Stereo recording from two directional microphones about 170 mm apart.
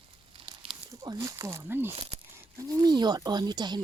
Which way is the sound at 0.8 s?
20° right (ahead or behind).